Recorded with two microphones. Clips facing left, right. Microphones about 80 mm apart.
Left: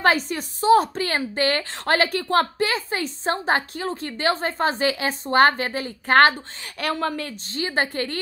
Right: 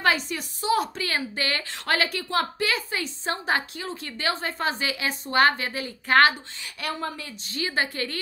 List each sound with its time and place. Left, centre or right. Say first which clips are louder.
0.0 s a woman's voice: left 4 dB; left
6.8 s a woman's voice: left 6 dB; left
7.5 s a woman's voice: left 3 dB; left